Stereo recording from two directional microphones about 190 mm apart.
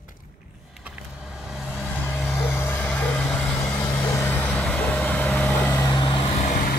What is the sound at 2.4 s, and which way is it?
Vehicle, 10° left (ahead or behind).